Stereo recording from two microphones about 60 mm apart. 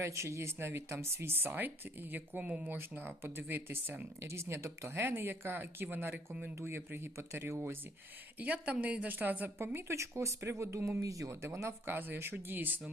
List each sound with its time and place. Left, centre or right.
0.0 s speech: right
4.2 s speech: right
4.9 s speech: right
6.6 s speech: right
8.4 s a woman's voice: right
9.6 s speech: right
11.4 s speech: right
11.9 s speech: right